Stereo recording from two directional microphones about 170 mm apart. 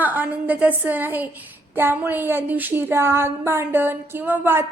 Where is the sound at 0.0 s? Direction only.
10° right (ahead or behind).